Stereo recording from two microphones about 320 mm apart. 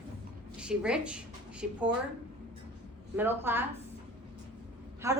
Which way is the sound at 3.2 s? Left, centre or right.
Centre.